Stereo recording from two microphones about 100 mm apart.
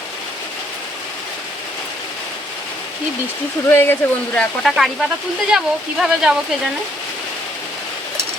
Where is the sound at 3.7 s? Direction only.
20° left (ahead or behind).